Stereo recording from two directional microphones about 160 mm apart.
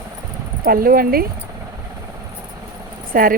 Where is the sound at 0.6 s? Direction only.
65° right (ahead or behind).